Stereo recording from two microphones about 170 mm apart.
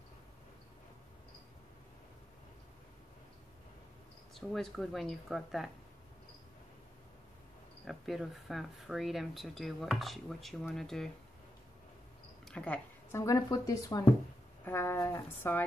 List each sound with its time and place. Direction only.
4.4 s speech: centre (ahead or behind)
7.8 s speech: centre (ahead or behind)
12.4 s speech: 5° left (ahead or behind)